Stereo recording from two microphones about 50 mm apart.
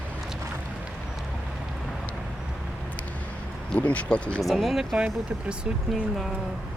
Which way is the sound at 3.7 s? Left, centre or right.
Left.